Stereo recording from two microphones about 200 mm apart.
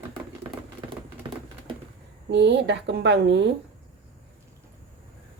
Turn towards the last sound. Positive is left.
turn(degrees=-60)  # may be behind; listen again after turning